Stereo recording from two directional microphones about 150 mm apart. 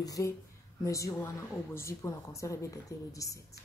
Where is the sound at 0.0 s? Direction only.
25° left (ahead or behind).